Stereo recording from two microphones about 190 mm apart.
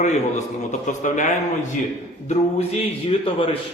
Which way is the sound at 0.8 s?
40° left (ahead or behind).